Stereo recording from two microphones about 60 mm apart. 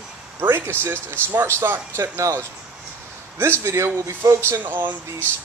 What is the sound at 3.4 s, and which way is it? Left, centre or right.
A man's voice, right.